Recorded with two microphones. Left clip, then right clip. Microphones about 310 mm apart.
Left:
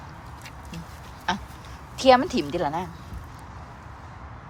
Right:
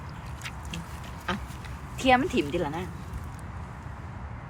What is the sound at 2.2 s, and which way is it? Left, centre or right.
Speech, left.